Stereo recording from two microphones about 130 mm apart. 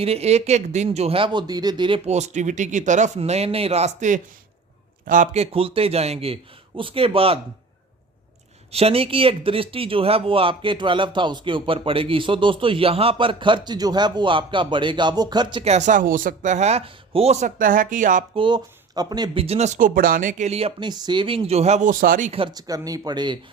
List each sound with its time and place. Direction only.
0.0 s a man's voice: 50° right (ahead or behind); by 2.0 s 35° right (ahead or behind)
2.0 s speech: 60° right (ahead or behind)
3.2 s speech: 55° right (ahead or behind)
5.0 s speech: 85° right
5.4 s a man's voice: 45° right (ahead or behind)
8.7 s speech: 50° right (ahead or behind)
15.6 s speech: 60° right (ahead or behind); by 18.3 s 85° right
18.3 s speech: 35° right (ahead or behind); by 20.5 s 90° right
20.5 s a man's voice: 50° right (ahead or behind); by 22.3 s 90° right
22.3 s a man's voice: 45° right (ahead or behind)
22.5 s speech: 30° right (ahead or behind)